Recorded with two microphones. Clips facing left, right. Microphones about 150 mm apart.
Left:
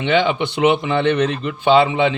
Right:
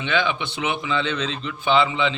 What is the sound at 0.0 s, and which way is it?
A man's voice, 60° left (ahead or behind).